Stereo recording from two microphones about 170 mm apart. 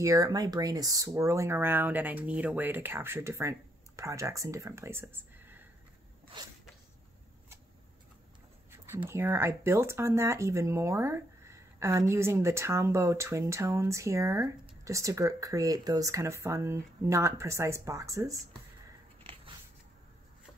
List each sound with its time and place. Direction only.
0.0 s speech: 20° right (ahead or behind)
6.4 s a sound: 25° right (ahead or behind)
8.9 s speech: 15° right (ahead or behind)